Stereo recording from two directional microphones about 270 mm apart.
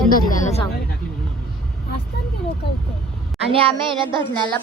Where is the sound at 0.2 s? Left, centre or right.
Left.